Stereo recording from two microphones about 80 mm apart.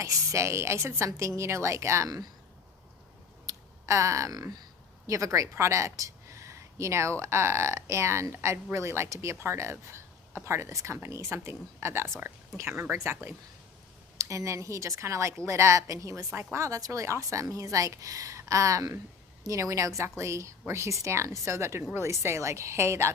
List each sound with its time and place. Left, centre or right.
0.0 s a woman's voice: right
3.4 s a sound: right
5.0 s a woman's voice: right